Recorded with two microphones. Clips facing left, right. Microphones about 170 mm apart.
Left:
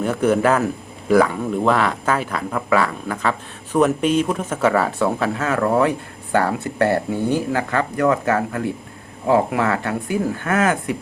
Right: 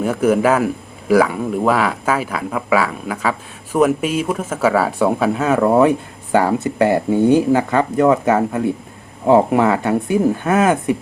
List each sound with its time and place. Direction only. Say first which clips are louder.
0.0 s a man's voice: right 2 dB; 10° right (ahead or behind)